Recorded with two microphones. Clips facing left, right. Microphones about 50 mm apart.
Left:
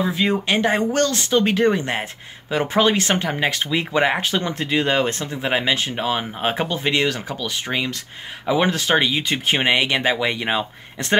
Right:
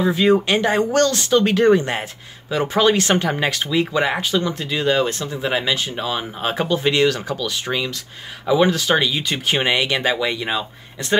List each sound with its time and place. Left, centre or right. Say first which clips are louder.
0.1 s speech: right 4 dB; centre
2.5 s speech: right 1 dB; left
4.2 s speech: right 1 dB; left; by 10.1 s centre
10.1 s speech: even; left